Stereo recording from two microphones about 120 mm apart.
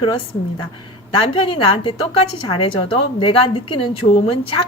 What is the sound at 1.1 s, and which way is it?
A woman's voice, 45° left (ahead or behind).